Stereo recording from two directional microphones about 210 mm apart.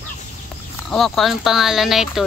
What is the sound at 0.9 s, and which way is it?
Speech, centre (ahead or behind).